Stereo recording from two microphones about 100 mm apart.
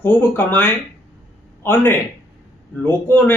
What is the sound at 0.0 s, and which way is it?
A man's voice, 20° left (ahead or behind).